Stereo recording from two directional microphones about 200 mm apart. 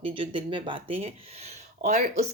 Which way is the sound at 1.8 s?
40° right (ahead or behind).